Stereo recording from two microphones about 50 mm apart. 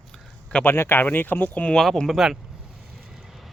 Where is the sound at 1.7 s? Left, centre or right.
Centre.